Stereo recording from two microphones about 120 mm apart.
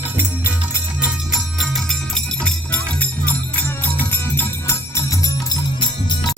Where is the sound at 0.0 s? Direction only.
15° right (ahead or behind).